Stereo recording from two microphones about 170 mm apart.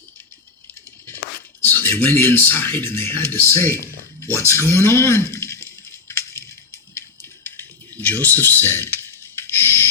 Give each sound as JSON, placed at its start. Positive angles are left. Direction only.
{"t": 1.6, "sound": "speech", "side_deg": 10}
{"t": 6.1, "sound": "a sound", "side_deg": 15}
{"t": 6.9, "sound": "typing", "side_deg": 10}